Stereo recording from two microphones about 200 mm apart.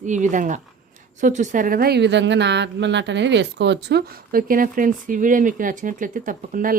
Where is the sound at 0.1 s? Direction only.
40° right (ahead or behind).